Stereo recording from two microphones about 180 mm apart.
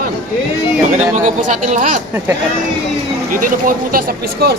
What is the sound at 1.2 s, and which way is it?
Speech, 45° right (ahead or behind).